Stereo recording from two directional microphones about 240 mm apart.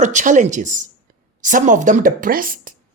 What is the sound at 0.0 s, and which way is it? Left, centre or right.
A woman's voice, right.